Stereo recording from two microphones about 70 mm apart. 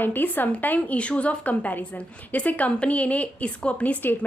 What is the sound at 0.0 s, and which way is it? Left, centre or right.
A woman's voice, left.